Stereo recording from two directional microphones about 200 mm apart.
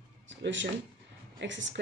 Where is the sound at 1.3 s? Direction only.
65° right (ahead or behind).